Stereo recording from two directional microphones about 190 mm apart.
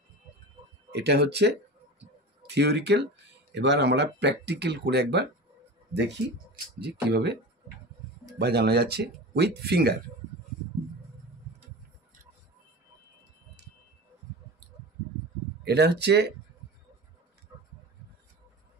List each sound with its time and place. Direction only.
0.9 s speech: 60° right (ahead or behind)
2.5 s speech: 60° right (ahead or behind)
8.4 s speech: 60° right (ahead or behind)
15.6 s speech: 60° right (ahead or behind)